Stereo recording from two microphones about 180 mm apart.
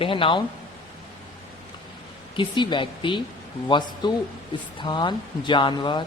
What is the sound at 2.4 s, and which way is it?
Speech, 25° left (ahead or behind).